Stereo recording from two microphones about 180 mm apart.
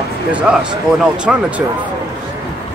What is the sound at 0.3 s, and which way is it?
Speech, 5° right (ahead or behind).